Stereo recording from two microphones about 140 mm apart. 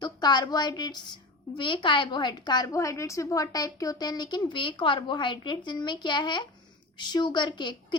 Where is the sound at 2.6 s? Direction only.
20° left (ahead or behind).